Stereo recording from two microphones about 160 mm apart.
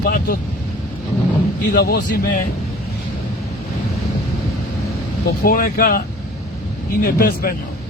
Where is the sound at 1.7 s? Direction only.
70° left (ahead or behind).